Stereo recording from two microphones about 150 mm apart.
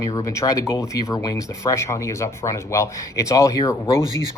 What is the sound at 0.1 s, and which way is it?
Speech, 20° left (ahead or behind).